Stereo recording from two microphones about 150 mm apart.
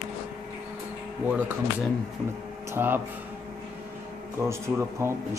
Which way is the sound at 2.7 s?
15° right (ahead or behind).